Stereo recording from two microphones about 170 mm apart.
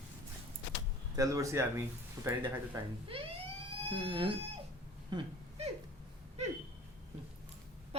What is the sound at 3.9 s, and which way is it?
Speech, 30° right (ahead or behind).